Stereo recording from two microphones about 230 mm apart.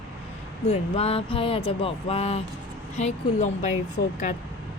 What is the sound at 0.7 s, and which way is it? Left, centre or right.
A woman's voice, left.